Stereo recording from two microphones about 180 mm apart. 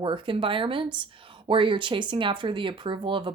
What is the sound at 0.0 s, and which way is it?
Speech, 30° right (ahead or behind).